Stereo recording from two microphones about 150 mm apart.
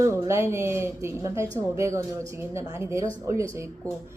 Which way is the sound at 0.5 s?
15° right (ahead or behind).